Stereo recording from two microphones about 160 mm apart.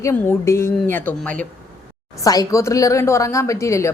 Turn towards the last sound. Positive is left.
turn(degrees=20)  # may be behind; listen again after turning